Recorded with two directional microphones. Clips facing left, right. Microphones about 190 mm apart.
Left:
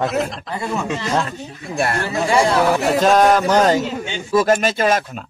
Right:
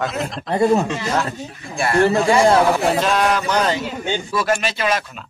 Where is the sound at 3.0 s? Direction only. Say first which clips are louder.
Left 5 dB; 40° left (ahead or behind).